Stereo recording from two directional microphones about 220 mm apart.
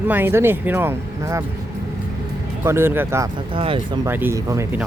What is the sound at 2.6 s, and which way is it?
Speech, 10° right (ahead or behind).